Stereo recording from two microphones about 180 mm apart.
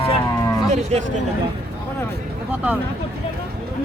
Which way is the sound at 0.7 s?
40° right (ahead or behind).